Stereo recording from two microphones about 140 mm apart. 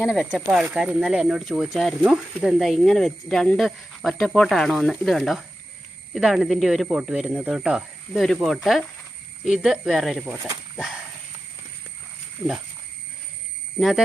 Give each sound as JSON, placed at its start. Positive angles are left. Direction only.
{"t": 0.0, "sound": "speech", "side_deg": -5}
{"t": 13.7, "sound": "speech", "side_deg": 0}